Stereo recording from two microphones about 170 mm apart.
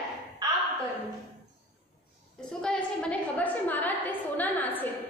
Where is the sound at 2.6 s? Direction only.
5° left (ahead or behind).